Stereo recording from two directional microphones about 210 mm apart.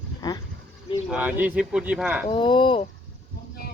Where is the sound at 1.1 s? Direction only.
5° right (ahead or behind).